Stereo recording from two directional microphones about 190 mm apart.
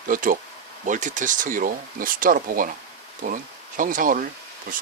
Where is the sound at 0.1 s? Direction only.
45° right (ahead or behind).